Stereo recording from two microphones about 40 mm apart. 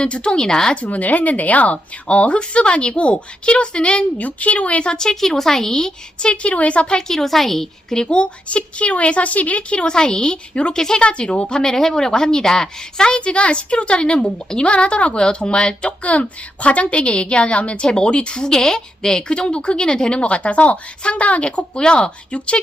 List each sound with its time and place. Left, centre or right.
0.0 s a woman's voice: left
0.8 s a woman's voice: left
4.2 s a woman's voice: left
4.8 s a woman's voice: centre
6.3 s a woman's voice: left
7.1 s a woman's voice: centre
19.4 s a woman's voice: left